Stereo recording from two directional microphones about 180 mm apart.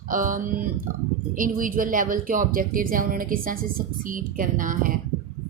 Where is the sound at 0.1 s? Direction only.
45° right (ahead or behind).